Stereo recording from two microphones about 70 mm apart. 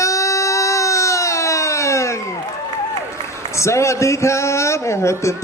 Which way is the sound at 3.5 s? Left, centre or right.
Left.